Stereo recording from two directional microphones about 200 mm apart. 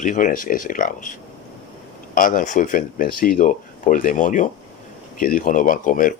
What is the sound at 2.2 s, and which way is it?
Speech, 40° left (ahead or behind).